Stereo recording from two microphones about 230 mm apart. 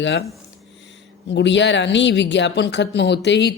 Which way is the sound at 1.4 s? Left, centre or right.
Left.